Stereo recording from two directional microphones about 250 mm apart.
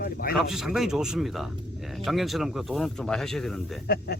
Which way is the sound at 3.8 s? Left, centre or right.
Left.